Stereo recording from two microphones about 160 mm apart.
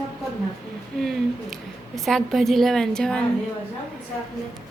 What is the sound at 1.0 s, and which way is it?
A woman's voice, centre (ahead or behind).